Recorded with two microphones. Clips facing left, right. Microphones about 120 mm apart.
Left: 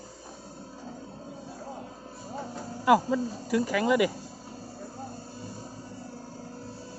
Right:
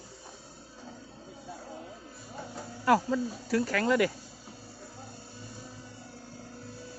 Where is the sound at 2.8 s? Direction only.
10° left (ahead or behind).